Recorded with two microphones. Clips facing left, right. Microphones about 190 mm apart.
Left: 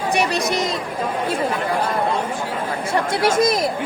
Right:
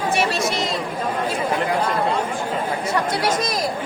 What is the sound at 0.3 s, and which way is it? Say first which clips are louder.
Chatter: left 2 dB; 15° left (ahead or behind).